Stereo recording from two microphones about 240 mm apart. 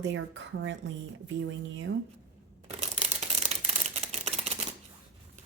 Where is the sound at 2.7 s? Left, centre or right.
Right.